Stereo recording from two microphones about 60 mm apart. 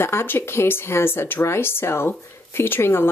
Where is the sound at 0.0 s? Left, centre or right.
Left.